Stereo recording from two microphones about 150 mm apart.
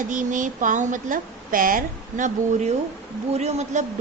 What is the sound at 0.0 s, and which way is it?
Speech, 60° right (ahead or behind).